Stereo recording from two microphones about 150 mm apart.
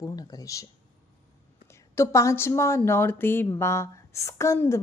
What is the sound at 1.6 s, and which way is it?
A woman's voice, 20° left (ahead or behind).